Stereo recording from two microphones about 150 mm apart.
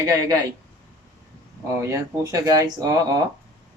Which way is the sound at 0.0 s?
20° right (ahead or behind).